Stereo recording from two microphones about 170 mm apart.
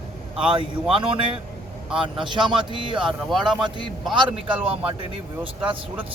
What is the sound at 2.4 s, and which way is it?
Speech, 30° right (ahead or behind).